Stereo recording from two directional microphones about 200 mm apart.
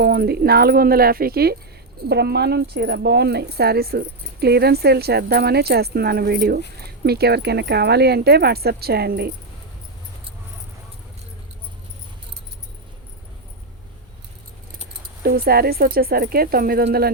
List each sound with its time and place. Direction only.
0.0 s speech: 50° right (ahead or behind)
15.2 s speech: 50° right (ahead or behind)